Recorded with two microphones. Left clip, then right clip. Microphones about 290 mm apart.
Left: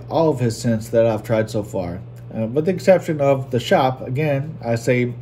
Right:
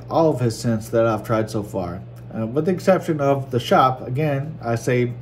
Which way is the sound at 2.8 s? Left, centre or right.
Centre.